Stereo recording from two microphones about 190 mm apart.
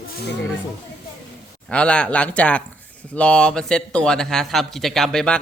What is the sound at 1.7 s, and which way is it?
A man's voice, 5° left (ahead or behind).